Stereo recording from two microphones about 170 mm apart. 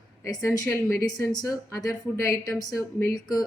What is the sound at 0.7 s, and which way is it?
Speech, 15° left (ahead or behind).